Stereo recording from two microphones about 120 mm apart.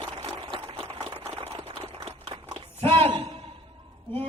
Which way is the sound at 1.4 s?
50° right (ahead or behind).